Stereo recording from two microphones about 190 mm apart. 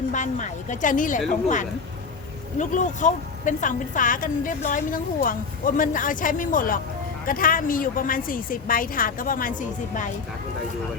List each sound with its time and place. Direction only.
0.1 s a woman's voice: 40° left (ahead or behind)